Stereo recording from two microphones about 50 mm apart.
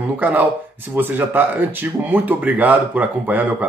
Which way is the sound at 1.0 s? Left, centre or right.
Right.